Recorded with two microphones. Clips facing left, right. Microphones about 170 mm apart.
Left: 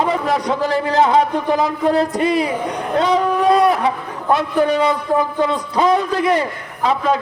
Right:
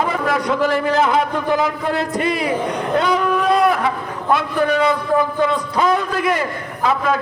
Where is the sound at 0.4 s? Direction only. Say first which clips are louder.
Right 1 dB; 35° left (ahead or behind).